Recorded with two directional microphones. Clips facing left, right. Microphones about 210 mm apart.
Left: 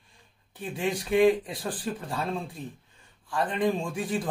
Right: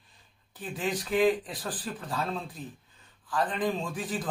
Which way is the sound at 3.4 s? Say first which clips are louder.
Left 3 dB; centre (ahead or behind).